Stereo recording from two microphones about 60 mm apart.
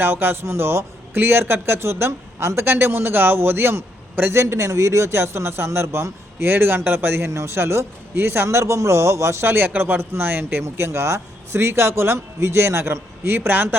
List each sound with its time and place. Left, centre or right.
0.0 s a man's voice: right
4.4 s a man's voice: right